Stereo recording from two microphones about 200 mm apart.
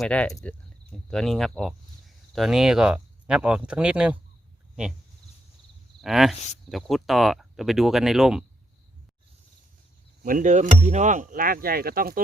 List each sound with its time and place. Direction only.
0.0 s speech: 5° left (ahead or behind)
6.0 s speech: centre (ahead or behind)
10.2 s speech: 40° right (ahead or behind)